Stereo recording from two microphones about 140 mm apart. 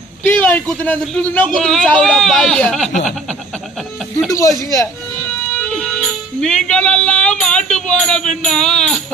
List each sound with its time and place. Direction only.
0.3 s a man's voice: 10° left (ahead or behind)
4.3 s speech: 20° left (ahead or behind)
5.7 s music: 5° left (ahead or behind)
8.4 s a man's voice: 5° left (ahead or behind)